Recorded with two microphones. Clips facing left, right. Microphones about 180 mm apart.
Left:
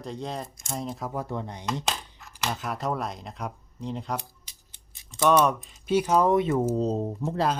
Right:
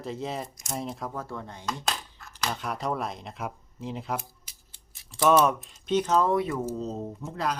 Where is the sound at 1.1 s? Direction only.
15° left (ahead or behind).